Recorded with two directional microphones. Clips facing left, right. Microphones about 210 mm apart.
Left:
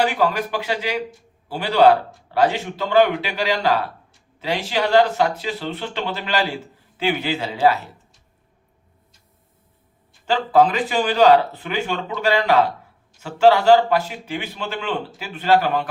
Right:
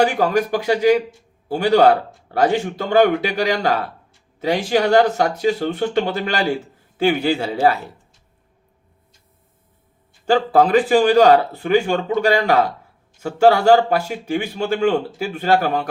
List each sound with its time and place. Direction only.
0.0 s speech: 45° right (ahead or behind)
10.2 s speech: 45° right (ahead or behind)